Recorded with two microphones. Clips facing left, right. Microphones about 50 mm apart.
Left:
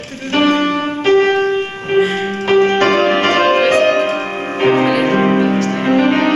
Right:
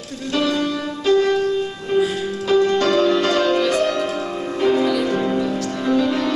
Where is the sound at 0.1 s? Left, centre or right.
Left.